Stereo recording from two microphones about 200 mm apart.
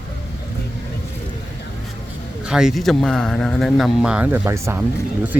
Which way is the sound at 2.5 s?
5° right (ahead or behind).